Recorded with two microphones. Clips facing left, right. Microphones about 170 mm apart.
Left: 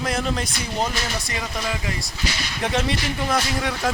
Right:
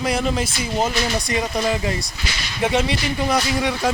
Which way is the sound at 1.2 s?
20° right (ahead or behind).